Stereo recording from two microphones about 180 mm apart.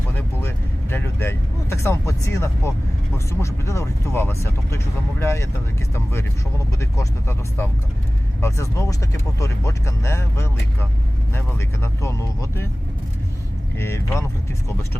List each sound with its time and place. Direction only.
0.1 s speech: 10° left (ahead or behind)
13.7 s speech: 15° left (ahead or behind)